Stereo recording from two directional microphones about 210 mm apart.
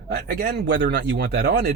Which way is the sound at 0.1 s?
50° right (ahead or behind).